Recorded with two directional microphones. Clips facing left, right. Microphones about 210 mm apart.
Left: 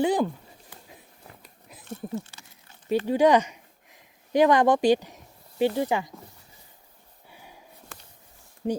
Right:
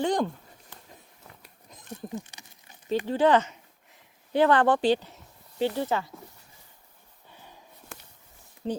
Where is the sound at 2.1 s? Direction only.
15° right (ahead or behind).